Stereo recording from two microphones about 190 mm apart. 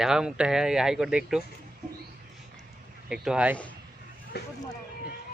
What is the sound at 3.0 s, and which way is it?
Speech, 5° right (ahead or behind).